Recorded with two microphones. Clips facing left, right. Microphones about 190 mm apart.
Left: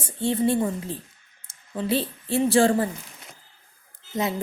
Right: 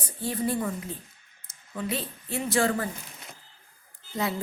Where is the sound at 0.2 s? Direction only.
25° left (ahead or behind).